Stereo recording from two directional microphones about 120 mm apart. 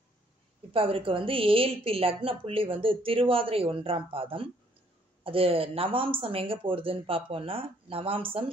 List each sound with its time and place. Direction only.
0.7 s a woman's voice: 50° right (ahead or behind)